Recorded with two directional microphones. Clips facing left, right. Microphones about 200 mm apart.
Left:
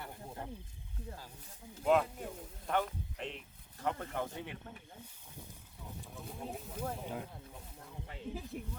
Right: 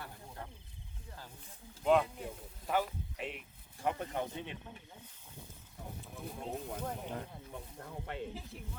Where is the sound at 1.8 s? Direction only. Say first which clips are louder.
Right 1 dB; centre (ahead or behind); by 4.5 s 20° right (ahead or behind).